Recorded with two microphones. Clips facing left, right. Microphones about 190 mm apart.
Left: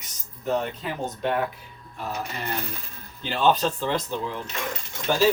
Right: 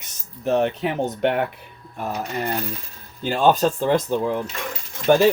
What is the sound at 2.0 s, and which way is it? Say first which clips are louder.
Speech: right 5 dB; 50° right (ahead or behind).